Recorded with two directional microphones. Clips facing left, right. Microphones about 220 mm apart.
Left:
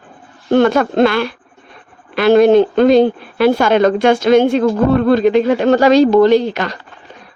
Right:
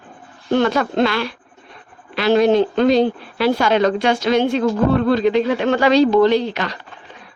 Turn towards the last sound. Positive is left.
turn(degrees=45)  # may be behind; listen again after turning